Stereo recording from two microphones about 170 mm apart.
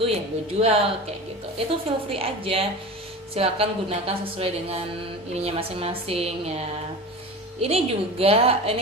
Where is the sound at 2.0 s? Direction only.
35° right (ahead or behind).